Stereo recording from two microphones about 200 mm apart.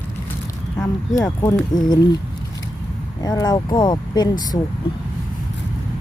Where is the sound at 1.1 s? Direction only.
15° left (ahead or behind).